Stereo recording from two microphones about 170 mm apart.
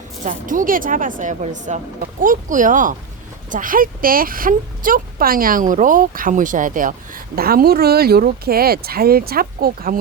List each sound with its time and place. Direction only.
0.3 s speech: 50° right (ahead or behind)